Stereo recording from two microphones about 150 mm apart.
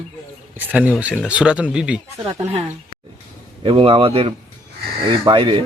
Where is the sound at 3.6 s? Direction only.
35° right (ahead or behind).